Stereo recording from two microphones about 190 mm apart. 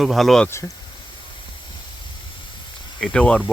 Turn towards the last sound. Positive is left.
turn(degrees=5)  # may be behind; listen again after turning